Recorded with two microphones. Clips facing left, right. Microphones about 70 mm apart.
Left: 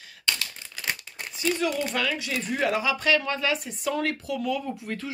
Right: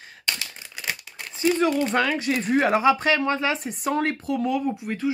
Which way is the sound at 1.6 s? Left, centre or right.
Right.